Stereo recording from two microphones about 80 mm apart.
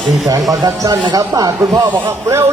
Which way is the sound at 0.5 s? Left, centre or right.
Right.